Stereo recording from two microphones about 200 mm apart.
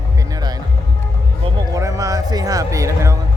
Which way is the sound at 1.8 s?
15° right (ahead or behind).